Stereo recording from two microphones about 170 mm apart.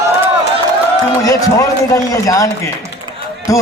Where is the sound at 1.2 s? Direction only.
20° left (ahead or behind).